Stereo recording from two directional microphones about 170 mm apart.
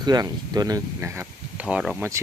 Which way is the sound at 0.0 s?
25° right (ahead or behind).